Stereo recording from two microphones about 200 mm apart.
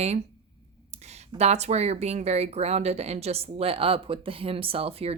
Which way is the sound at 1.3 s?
35° right (ahead or behind).